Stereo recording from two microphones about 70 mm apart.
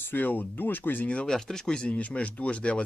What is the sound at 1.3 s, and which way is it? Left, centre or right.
Speech, centre.